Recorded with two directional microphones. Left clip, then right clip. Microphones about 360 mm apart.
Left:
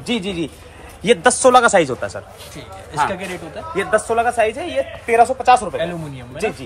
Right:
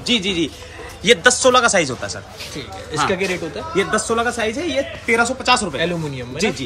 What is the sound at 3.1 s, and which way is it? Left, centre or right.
Speech, centre.